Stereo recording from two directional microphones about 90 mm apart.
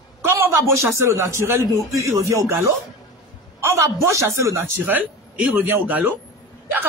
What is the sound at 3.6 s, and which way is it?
A man's voice, 30° right (ahead or behind).